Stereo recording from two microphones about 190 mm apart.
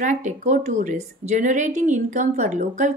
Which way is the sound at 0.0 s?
40° right (ahead or behind).